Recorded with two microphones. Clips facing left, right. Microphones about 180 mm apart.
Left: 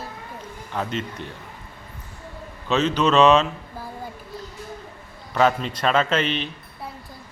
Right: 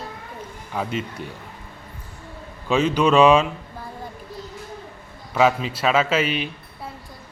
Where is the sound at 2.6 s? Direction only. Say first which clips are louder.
Right 2 dB; 10° right (ahead or behind).